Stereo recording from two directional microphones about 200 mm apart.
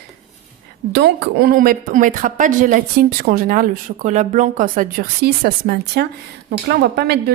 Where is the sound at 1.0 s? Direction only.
50° right (ahead or behind).